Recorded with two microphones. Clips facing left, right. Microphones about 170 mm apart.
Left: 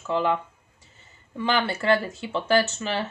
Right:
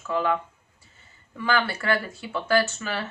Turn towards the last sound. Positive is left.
turn(degrees=25)  # may be behind; listen again after turning